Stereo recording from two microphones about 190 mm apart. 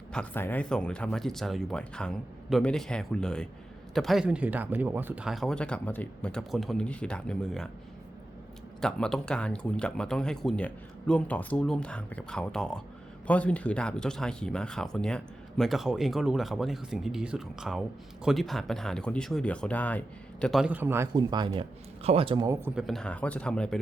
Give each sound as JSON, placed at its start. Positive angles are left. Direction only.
{"t": 0.1, "sound": "speech", "side_deg": 10}
{"t": 8.8, "sound": "speech", "side_deg": 5}
{"t": 21.2, "sound": "speech", "side_deg": -25}
{"t": 22.7, "sound": "speech", "side_deg": 0}